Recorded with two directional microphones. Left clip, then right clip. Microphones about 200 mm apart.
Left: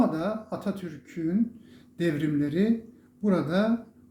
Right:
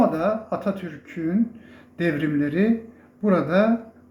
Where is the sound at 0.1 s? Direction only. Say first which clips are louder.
Right 7 dB; 15° left (ahead or behind).